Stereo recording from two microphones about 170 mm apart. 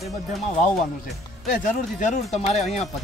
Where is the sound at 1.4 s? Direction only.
50° left (ahead or behind).